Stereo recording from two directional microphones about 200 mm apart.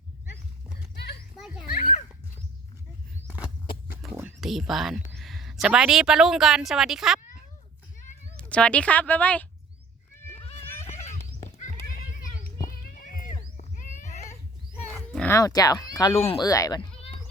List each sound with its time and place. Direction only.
0.9 s children playing: 55° left (ahead or behind)
3.9 s a sound: 10° right (ahead or behind)
5.1 s speech: centre (ahead or behind)
8.4 s speech: 5° left (ahead or behind)
11.4 s horse: 35° left (ahead or behind)
12.5 s a sound: 45° left (ahead or behind)
14.9 s roaring cats: 5° left (ahead or behind)
15.4 s speech: 20° left (ahead or behind)
16.5 s speech: 15° left (ahead or behind)